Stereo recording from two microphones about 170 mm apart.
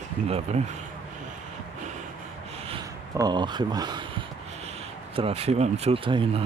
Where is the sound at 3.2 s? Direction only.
25° right (ahead or behind).